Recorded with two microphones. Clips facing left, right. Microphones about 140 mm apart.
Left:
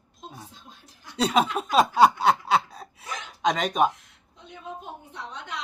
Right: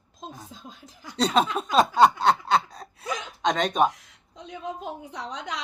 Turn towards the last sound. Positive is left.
turn(degrees=-90)